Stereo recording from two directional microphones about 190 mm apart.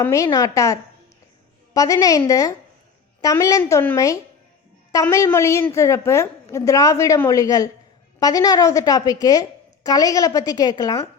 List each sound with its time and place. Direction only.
0.0 s a woman's voice: 15° left (ahead or behind)